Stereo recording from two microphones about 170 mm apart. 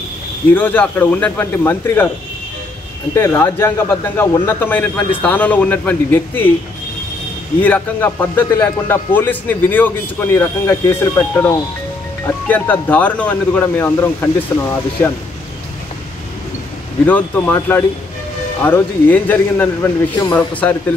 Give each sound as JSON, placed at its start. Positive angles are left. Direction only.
{"t": 0.5, "sound": "speech", "side_deg": 10}
{"t": 3.2, "sound": "speech", "side_deg": 15}
{"t": 7.6, "sound": "speech", "side_deg": 10}
{"t": 17.0, "sound": "speech", "side_deg": 10}